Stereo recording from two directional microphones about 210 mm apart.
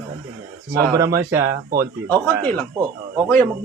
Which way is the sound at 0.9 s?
15° right (ahead or behind).